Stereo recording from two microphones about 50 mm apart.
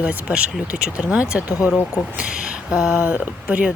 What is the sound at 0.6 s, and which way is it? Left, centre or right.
Speech, right.